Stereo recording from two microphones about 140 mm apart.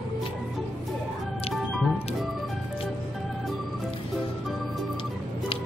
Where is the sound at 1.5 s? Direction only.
Centre (ahead or behind).